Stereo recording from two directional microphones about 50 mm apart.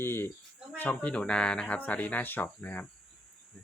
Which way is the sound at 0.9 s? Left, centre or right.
Left.